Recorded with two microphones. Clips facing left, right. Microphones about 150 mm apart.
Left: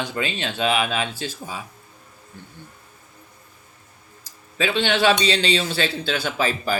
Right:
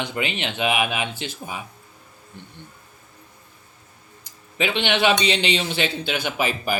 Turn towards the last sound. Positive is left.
turn(degrees=-15)  # may be behind; listen again after turning